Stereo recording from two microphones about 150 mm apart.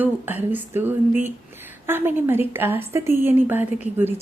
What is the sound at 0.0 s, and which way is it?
A woman's voice, 10° right (ahead or behind).